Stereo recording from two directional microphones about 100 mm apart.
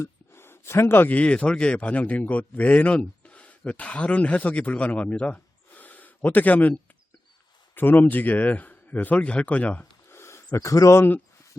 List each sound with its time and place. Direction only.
0.0 s speech: 25° left (ahead or behind)
7.8 s speech: 20° left (ahead or behind)
10.1 s speech: 25° left (ahead or behind)